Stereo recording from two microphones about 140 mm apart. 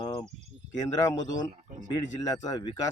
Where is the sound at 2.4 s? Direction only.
30° left (ahead or behind).